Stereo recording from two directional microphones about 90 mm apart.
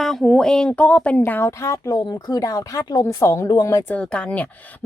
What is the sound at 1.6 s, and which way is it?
Speech, 35° left (ahead or behind).